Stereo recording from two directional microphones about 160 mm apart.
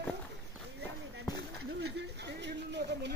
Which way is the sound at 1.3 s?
90° right.